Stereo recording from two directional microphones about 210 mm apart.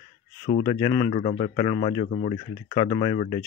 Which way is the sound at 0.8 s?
20° left (ahead or behind).